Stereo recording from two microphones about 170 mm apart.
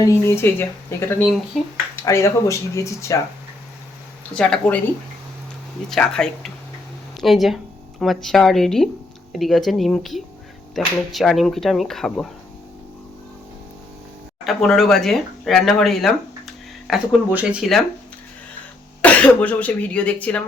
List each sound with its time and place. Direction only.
0.0 s speech: 15° left (ahead or behind)
2.0 s speech: 15° left (ahead or behind)
4.4 s speech: 5° left (ahead or behind)
5.9 s speech: 5° left (ahead or behind)
14.4 s speech: centre (ahead or behind)
19.0 s speech: 5° left (ahead or behind)